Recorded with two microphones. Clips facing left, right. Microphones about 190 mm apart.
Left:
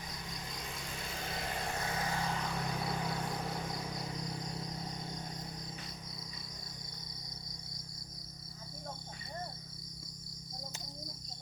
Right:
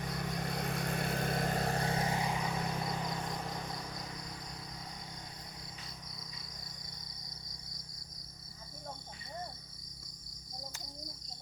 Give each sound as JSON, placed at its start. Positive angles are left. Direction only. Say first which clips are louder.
{"t": 0.2, "sound": "vehicle", "louder": "right 8 dB", "side_deg": -65}
{"t": 2.2, "sound": "vehicle", "louder": "right 2 dB", "side_deg": -10}